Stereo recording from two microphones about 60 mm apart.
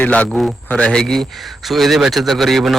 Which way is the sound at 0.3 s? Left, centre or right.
Centre.